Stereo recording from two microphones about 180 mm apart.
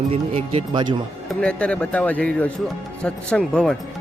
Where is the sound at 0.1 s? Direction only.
30° right (ahead or behind).